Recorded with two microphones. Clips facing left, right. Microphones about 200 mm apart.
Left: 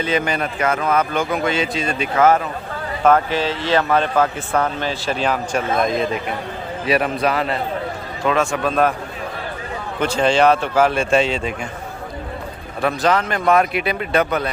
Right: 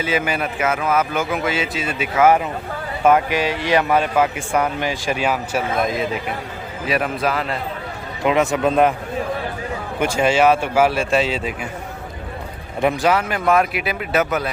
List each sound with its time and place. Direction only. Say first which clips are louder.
0.0 s speech: left 1 dB; 5° right (ahead or behind)
8.2 s a man's voice: right 2 dB; 20° right (ahead or behind)
10.0 s speech: left 1 dB; 10° right (ahead or behind)
12.8 s speech: right 1 dB; 10° right (ahead or behind)